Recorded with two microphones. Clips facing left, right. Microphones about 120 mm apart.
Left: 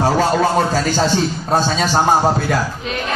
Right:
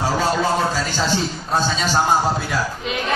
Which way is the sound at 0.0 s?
50° left (ahead or behind).